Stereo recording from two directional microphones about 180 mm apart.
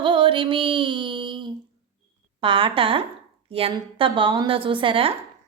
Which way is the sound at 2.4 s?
30° right (ahead or behind).